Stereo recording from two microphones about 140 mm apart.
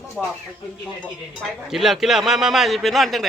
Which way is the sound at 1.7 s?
5° right (ahead or behind).